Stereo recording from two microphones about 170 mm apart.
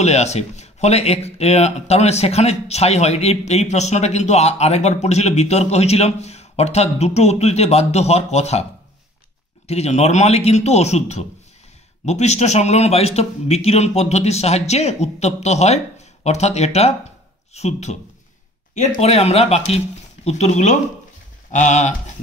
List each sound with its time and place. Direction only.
0.0 s speech: 40° left (ahead or behind)
9.7 s speech: 40° left (ahead or behind)